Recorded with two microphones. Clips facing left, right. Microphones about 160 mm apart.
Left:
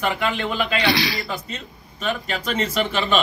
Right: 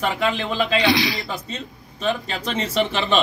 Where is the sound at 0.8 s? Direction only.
20° right (ahead or behind).